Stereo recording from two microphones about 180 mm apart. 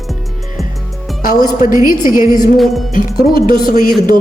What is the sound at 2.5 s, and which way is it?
Music, centre (ahead or behind).